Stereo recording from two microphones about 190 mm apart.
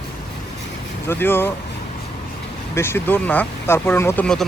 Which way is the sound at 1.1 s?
10° left (ahead or behind).